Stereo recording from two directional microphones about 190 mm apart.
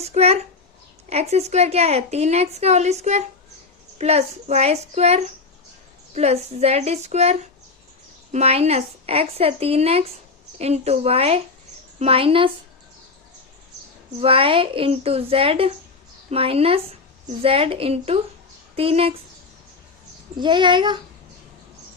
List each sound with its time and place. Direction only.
0.0 s a child's voice: 35° right (ahead or behind)
14.2 s a woman's voice: 30° right (ahead or behind)
20.3 s a woman's voice: 25° right (ahead or behind)